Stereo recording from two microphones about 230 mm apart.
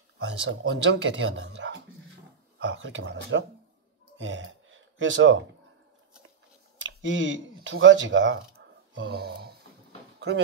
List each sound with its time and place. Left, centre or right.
0.2 s speech: right
6.8 s speech: right